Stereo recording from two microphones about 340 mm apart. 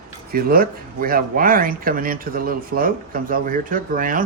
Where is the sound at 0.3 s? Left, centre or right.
Right.